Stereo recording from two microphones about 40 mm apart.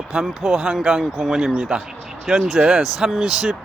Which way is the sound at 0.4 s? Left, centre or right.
Centre.